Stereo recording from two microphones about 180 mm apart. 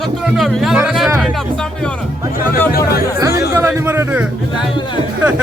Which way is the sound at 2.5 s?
55° left (ahead or behind).